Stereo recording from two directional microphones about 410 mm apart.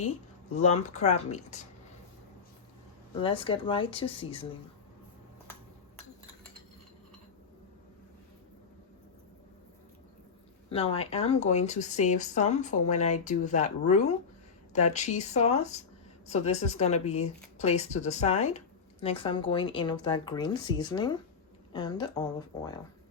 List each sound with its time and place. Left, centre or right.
0.5 s speech: centre
3.2 s speech: centre
10.7 s speech: centre